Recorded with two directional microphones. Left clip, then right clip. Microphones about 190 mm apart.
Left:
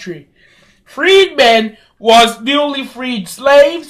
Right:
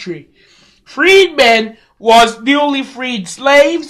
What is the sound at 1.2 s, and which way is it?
A man's voice, 35° right (ahead or behind).